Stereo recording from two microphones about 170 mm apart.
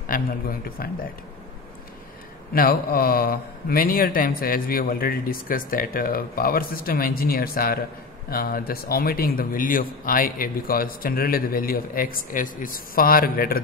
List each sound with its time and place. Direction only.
0.0 s a man's voice: 55° left (ahead or behind)
2.5 s a man's voice: 60° left (ahead or behind)